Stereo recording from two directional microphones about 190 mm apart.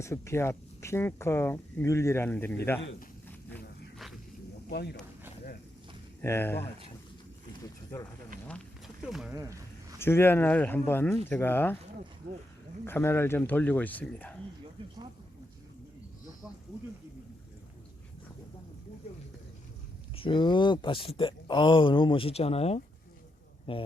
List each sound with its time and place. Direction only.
0.0 s speech: 15° left (ahead or behind)
4.7 s speech: 60° left (ahead or behind)
6.2 s speech: 10° left (ahead or behind)
9.3 s speech: 15° right (ahead or behind)
10.0 s speech: 10° left (ahead or behind)
12.8 s speech: 10° left (ahead or behind)
20.1 s speech: 25° left (ahead or behind)